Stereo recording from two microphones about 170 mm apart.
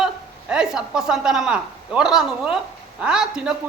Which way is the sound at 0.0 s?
5° right (ahead or behind).